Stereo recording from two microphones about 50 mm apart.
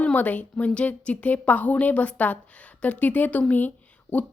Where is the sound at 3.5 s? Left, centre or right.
Left.